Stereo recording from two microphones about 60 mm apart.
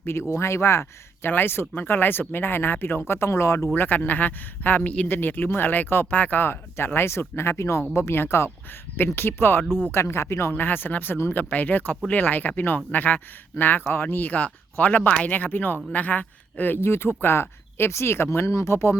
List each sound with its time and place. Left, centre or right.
0.0 s speech: left
1.3 s speech: left
3.1 s speech: left
3.8 s speech: left
9.6 s speech: centre
9.9 s speech: left
10.5 s speech: left